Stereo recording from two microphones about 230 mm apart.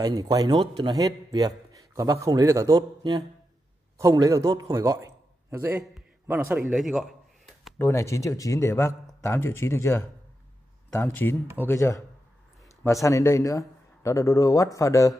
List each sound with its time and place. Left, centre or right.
0.0 s a man's voice: centre
5.9 s a sound: centre
7.9 s a man's voice: centre